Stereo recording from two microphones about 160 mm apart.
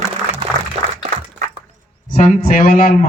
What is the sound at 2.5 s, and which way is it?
Speech, 60° left (ahead or behind).